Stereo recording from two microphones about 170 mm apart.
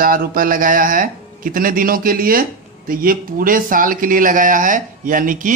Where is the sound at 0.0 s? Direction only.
55° right (ahead or behind).